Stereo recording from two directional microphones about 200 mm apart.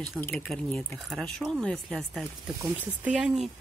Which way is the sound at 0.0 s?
5° left (ahead or behind).